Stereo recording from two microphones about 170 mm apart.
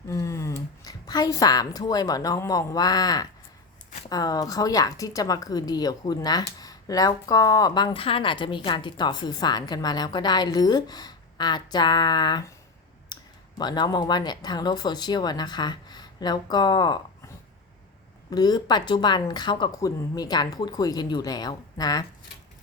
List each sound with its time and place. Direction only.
0.1 s a woman's voice: 20° left (ahead or behind)
13.6 s a woman's voice: 25° left (ahead or behind)
18.3 s a woman's voice: 25° left (ahead or behind)